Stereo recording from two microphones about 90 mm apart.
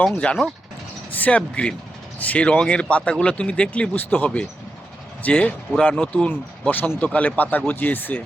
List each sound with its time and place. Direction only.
0.2 s speech: 10° left (ahead or behind)